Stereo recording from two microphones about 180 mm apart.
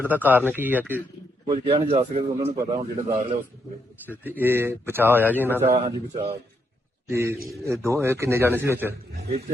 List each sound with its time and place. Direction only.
0.0 s a man's voice: 10° right (ahead or behind)
1.5 s a man's voice: 30° right (ahead or behind)
4.3 s a man's voice: 10° right (ahead or behind)
5.7 s speech: 40° right (ahead or behind)
7.1 s a man's voice: 15° right (ahead or behind)